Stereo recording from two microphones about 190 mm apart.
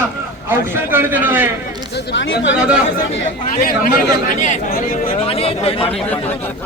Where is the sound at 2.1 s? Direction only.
75° left (ahead or behind).